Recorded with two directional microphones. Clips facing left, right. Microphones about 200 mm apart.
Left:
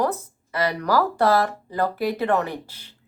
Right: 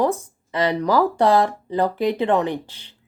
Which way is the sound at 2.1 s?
20° right (ahead or behind).